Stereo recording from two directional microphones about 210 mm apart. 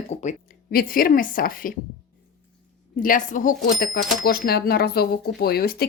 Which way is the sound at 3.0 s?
40° left (ahead or behind).